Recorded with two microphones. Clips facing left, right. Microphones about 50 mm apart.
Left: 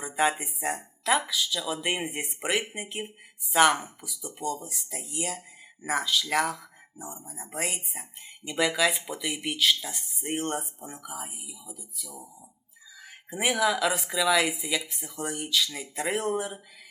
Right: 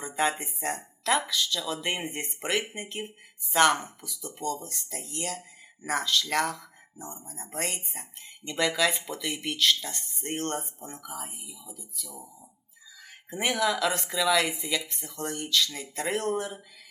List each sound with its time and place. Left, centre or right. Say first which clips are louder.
0.0 s speech: left 2 dB; centre